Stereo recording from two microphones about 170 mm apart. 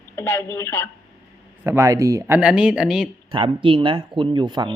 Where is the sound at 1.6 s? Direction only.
15° right (ahead or behind).